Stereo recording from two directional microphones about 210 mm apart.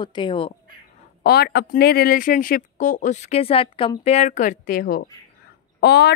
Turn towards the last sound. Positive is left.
turn(degrees=50)  # may be behind; listen again after turning